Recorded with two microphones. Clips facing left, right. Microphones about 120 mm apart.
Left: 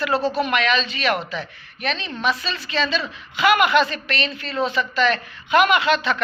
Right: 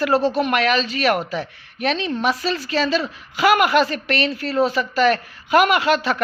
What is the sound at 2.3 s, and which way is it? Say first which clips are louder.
A man's voice: right 4 dB; 45° right (ahead or behind).